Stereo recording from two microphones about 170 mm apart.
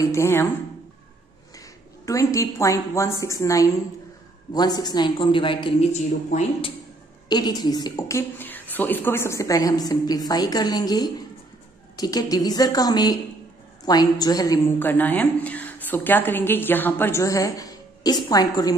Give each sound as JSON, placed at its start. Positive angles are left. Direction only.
{"t": 0.0, "sound": "a woman's voice", "side_deg": 15}
{"t": 2.0, "sound": "a woman's voice", "side_deg": 20}
{"t": 7.2, "sound": "a woman's voice", "side_deg": 25}